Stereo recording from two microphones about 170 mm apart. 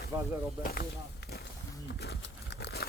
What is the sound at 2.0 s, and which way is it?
Crumpling, 80° left.